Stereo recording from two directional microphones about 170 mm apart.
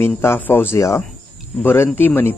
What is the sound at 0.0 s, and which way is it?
Speech, 15° left (ahead or behind).